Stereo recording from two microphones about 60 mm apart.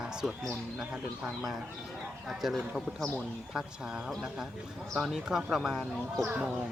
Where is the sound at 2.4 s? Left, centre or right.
Centre.